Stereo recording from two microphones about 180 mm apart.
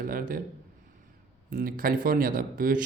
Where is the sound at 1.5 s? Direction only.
50° right (ahead or behind).